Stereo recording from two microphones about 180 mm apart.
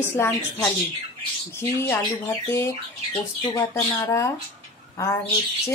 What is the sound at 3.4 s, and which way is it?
A woman's voice, 25° left (ahead or behind).